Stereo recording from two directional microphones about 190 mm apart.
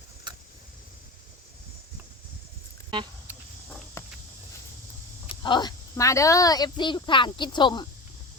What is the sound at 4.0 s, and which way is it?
Walk, 15° left (ahead or behind).